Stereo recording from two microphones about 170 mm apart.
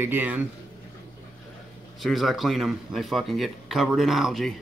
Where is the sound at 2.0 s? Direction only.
Centre (ahead or behind).